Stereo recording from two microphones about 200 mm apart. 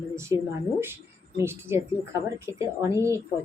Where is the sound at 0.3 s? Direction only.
25° left (ahead or behind).